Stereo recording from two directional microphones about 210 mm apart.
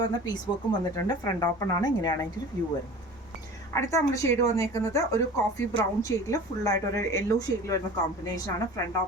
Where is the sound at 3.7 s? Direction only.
15° left (ahead or behind).